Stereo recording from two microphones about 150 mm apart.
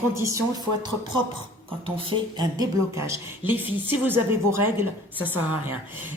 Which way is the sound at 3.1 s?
15° right (ahead or behind).